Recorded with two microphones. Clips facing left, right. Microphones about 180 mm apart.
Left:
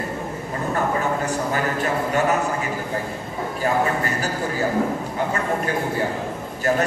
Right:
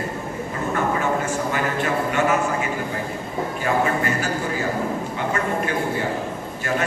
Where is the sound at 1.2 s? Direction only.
40° left (ahead or behind).